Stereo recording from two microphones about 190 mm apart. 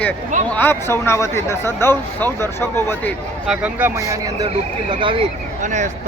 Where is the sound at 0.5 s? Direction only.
10° left (ahead or behind).